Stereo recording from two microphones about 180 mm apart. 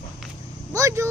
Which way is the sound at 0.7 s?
15° right (ahead or behind).